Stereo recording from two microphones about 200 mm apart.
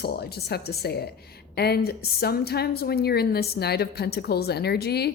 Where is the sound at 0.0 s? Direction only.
50° left (ahead or behind).